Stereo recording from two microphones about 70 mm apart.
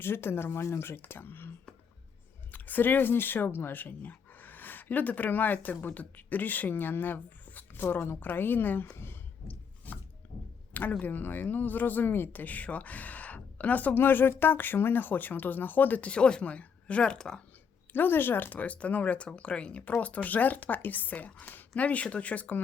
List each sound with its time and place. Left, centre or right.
0.0 s speech: left
9.5 s a sound: left
11.0 s speech: left; by 17.4 s centre
17.9 s speech: left